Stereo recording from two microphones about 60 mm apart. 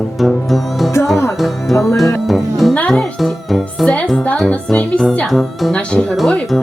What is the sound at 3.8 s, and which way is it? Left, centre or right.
Music, centre.